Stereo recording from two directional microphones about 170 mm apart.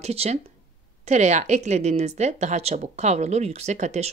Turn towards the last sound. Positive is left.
turn(degrees=-40)  # may be behind; listen again after turning